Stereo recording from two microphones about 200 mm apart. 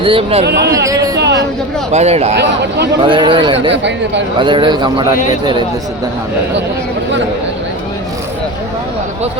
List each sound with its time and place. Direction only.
0.0 s a man's voice: 25° right (ahead or behind)
0.4 s speech: 55° right (ahead or behind)
0.9 s a sound: 15° right (ahead or behind)
1.2 s a sound: 60° right (ahead or behind)
1.9 s speech: 30° right (ahead or behind)
2.3 s speech: 60° right (ahead or behind)
3.0 s a man's voice: 25° right (ahead or behind)